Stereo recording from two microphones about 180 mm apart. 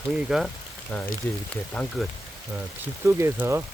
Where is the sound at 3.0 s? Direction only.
15° right (ahead or behind).